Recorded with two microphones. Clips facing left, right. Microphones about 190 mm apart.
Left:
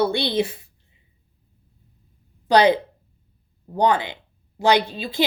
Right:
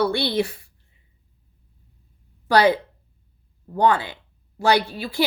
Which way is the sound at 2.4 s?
20° left (ahead or behind).